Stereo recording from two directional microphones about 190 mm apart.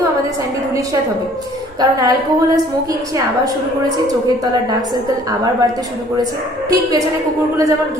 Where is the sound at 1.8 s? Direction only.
20° right (ahead or behind).